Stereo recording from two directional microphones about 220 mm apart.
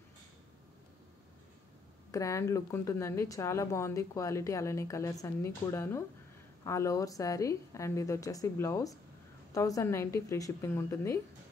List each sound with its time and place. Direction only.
2.0 s speech: 15° left (ahead or behind)